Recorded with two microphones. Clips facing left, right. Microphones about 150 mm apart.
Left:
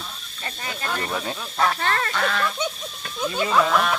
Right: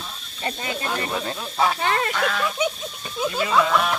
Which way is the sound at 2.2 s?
5° right (ahead or behind).